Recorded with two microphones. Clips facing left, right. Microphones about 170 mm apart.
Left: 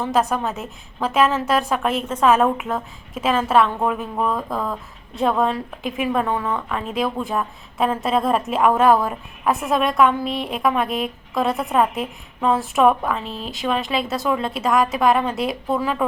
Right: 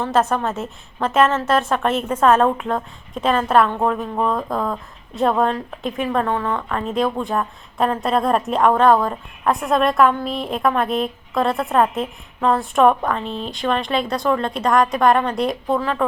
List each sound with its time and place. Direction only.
0.1 s a woman's voice: 15° left (ahead or behind)